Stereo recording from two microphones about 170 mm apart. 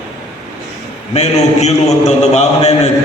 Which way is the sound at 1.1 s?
40° left (ahead or behind).